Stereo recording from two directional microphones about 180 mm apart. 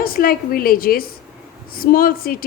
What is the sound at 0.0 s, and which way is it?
Speech, 55° left (ahead or behind).